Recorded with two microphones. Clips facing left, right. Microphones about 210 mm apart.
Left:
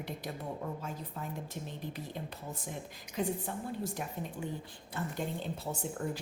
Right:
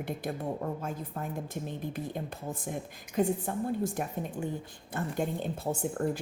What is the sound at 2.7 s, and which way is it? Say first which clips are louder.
Speech: right 5 dB; 50° right (ahead or behind).